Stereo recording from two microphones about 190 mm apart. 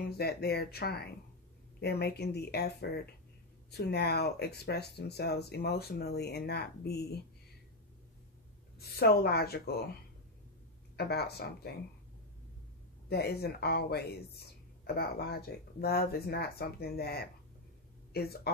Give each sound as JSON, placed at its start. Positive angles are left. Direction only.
{"t": 0.2, "sound": "speech", "side_deg": 55}
{"t": 8.7, "sound": "speech", "side_deg": 55}
{"t": 11.0, "sound": "speech", "side_deg": 55}
{"t": 13.1, "sound": "speech", "side_deg": 60}